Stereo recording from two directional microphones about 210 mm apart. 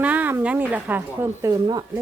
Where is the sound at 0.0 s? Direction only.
5° right (ahead or behind).